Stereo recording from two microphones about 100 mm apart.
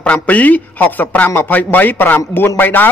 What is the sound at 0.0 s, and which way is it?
A man's voice, 15° left (ahead or behind).